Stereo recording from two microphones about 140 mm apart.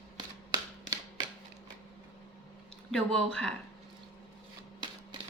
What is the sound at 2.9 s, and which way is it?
Speech, 5° left (ahead or behind).